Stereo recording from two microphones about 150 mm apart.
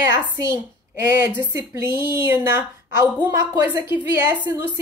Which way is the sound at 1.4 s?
15° right (ahead or behind).